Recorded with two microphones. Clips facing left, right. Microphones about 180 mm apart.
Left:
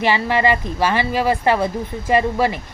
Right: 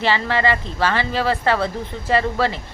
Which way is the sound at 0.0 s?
15° left (ahead or behind).